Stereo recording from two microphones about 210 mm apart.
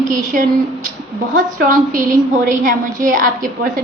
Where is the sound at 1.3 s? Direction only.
40° right (ahead or behind).